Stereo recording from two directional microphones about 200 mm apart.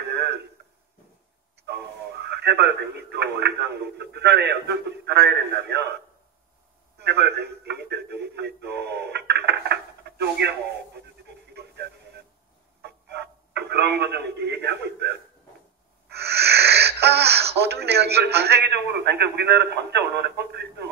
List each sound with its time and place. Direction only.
0.0 s a sound: 55° right (ahead or behind)
1.7 s speech: 55° right (ahead or behind)
7.0 s speech: 55° right (ahead or behind)
11.0 s radio: 55° right (ahead or behind)
16.1 s speech: 55° right (ahead or behind)